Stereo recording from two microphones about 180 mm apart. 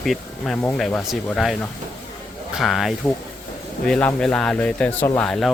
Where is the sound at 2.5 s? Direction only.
Centre (ahead or behind).